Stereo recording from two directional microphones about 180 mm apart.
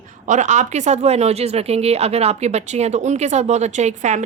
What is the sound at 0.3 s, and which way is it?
Speech, 40° right (ahead or behind).